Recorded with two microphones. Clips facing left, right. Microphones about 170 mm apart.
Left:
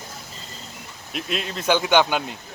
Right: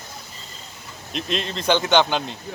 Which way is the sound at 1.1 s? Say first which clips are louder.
Right 2 dB; 5° left (ahead or behind).